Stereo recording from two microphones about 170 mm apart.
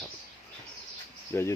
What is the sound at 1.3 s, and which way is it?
Speech, 15° left (ahead or behind).